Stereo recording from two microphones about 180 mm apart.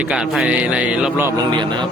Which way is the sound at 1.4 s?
25° right (ahead or behind).